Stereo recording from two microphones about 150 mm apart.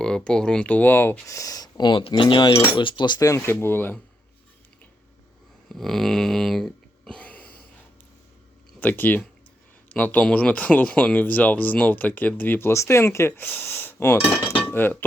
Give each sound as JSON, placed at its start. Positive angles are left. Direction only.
{"t": 0.0, "sound": "speech", "side_deg": 5}
{"t": 5.6, "sound": "a sound", "side_deg": 0}
{"t": 8.8, "sound": "speech", "side_deg": 10}